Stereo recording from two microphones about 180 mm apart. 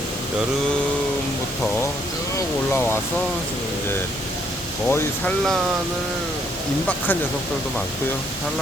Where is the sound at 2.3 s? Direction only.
10° left (ahead or behind).